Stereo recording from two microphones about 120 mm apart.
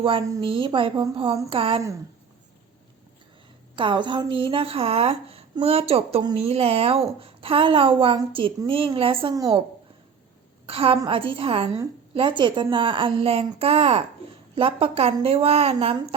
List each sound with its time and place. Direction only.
0.0 s speech: 45° right (ahead or behind)
3.8 s a woman's voice: 40° right (ahead or behind)
10.7 s speech: 50° right (ahead or behind)